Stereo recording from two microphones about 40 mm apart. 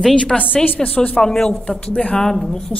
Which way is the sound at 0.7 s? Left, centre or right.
Left.